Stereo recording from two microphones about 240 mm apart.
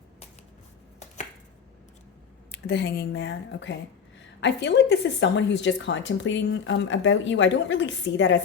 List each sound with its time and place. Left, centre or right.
0.9 s chopping: left
2.5 s a woman's voice: left